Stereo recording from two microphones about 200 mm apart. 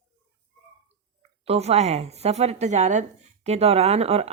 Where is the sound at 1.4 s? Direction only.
30° right (ahead or behind).